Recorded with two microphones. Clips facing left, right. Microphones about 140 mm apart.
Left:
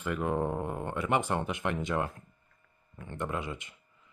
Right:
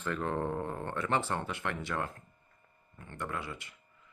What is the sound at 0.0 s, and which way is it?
Speech, 10° left (ahead or behind).